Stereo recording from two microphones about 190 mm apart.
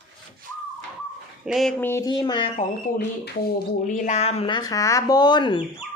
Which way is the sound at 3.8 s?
40° left (ahead or behind).